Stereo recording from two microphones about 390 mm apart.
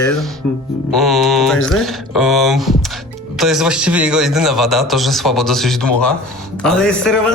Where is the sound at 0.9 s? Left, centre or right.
Centre.